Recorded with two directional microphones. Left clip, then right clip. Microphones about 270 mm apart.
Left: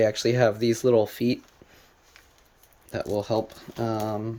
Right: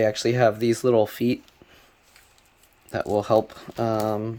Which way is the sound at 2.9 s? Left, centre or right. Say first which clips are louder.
Right 6 dB; centre.